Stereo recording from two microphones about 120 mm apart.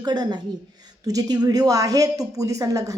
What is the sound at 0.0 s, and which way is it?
A woman's voice, 35° right (ahead or behind).